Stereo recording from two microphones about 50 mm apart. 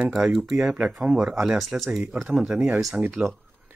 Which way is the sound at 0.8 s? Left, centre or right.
Right.